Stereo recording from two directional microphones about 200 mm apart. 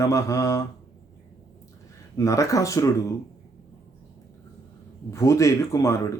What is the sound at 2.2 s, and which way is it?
Speech, 15° left (ahead or behind).